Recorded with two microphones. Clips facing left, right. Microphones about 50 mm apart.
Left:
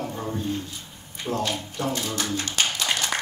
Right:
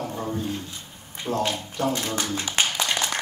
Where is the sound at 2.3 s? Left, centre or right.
Right.